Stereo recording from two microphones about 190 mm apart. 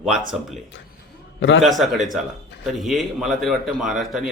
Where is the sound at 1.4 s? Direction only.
80° left.